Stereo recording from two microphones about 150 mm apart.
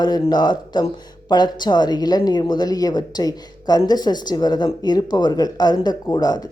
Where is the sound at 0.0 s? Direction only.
30° left (ahead or behind).